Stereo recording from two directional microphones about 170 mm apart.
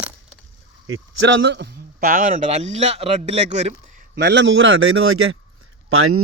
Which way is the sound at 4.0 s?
75° right (ahead or behind).